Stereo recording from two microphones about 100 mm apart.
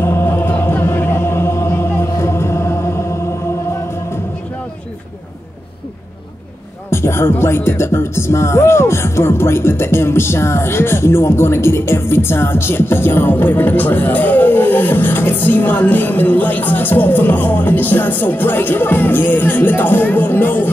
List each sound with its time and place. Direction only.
0.0 s music: 25° left (ahead or behind)
6.9 s music: 25° left (ahead or behind)